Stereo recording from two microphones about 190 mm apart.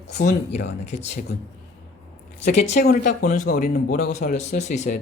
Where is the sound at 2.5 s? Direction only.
35° left (ahead or behind).